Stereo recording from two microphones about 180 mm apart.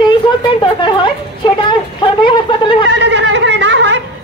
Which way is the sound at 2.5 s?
25° left (ahead or behind).